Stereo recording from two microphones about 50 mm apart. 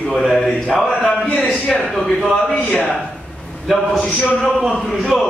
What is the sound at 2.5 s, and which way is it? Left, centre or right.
Speech, left.